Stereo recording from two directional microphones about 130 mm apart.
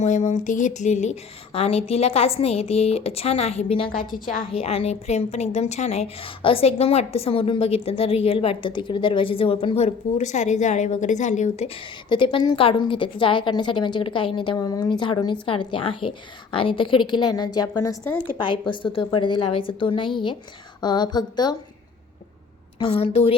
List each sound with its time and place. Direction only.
0.0 s a woman's voice: 65° left (ahead or behind); by 3.9 s 45° left (ahead or behind)
3.9 s a woman's voice: 90° left
4.5 s a woman's voice: 50° left (ahead or behind)
12.0 s a woman's voice: 40° left (ahead or behind)
18.3 s a woman's voice: 35° left (ahead or behind)
22.8 s a woman's voice: 45° left (ahead or behind)